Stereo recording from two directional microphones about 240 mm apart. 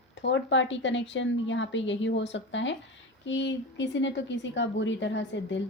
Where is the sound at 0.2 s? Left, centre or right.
Left.